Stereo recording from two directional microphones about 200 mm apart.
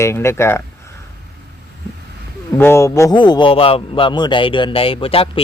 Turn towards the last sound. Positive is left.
turn(degrees=30)  # may be behind; listen again after turning